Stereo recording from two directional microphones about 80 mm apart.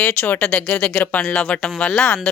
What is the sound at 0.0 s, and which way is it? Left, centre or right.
A woman's voice, centre.